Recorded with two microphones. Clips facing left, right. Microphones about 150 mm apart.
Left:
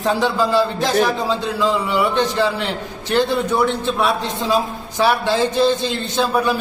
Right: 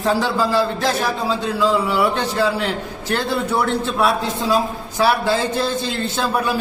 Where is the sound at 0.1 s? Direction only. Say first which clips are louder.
Left 1 dB; centre (ahead or behind).